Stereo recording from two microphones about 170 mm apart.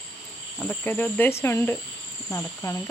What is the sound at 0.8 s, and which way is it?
Speech, 10° left (ahead or behind).